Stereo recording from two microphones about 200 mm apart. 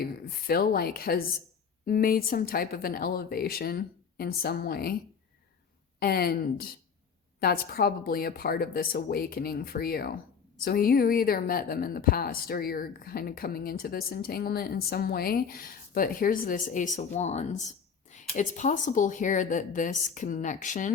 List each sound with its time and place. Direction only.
0.0 s a woman's voice: 50° left (ahead or behind)
6.0 s a woman's voice: 50° left (ahead or behind)